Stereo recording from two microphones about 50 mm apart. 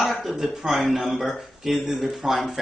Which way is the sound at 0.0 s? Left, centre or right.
Centre.